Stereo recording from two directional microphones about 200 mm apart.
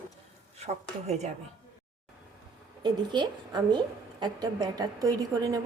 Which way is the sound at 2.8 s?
20° right (ahead or behind).